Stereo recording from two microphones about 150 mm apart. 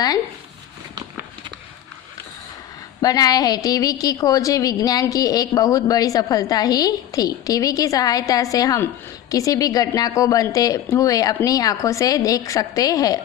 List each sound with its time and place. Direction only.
3.0 s a woman's voice: 25° left (ahead or behind)